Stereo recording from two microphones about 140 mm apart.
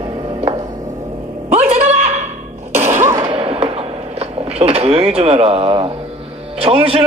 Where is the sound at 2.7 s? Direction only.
50° right (ahead or behind).